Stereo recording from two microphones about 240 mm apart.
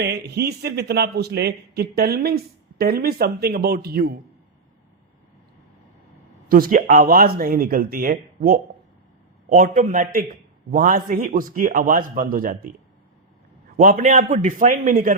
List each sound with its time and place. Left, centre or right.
0.0 s a man's voice: right
6.5 s a man's voice: right
13.8 s a man's voice: right